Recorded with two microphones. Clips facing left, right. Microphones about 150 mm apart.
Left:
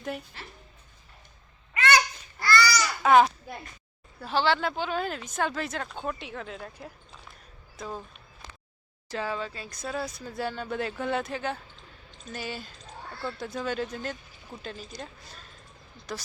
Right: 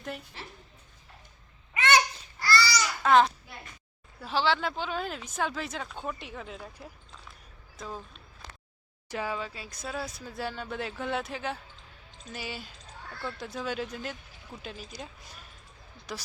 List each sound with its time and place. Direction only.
1.7 s babbling: 20° right (ahead or behind)
2.4 s babbling: 30° right (ahead or behind)
3.0 s a child's voice: 5° left (ahead or behind)
9.0 s speech: 10° right (ahead or behind)